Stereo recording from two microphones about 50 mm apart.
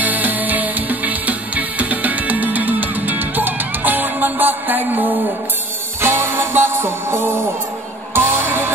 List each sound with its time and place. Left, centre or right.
0.0 s music: right
5.9 s music: right